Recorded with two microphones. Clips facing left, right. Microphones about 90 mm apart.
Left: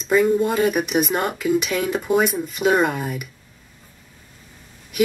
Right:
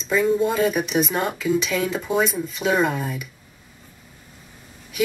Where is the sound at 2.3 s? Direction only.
55° left (ahead or behind).